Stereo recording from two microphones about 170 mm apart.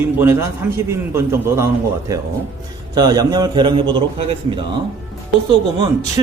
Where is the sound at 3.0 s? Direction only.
25° right (ahead or behind).